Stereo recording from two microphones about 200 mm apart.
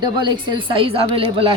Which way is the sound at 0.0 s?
20° right (ahead or behind).